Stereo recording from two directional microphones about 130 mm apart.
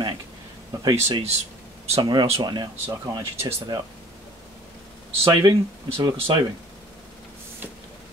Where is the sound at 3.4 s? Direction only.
20° right (ahead or behind).